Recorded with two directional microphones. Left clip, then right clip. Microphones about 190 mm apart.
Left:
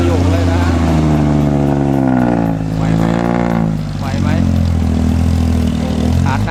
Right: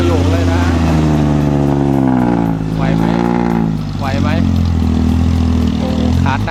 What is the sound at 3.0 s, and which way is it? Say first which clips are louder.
Vehicle: even; 30° left (ahead or behind).